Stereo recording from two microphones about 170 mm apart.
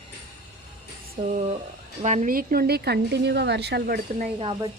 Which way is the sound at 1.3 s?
45° right (ahead or behind).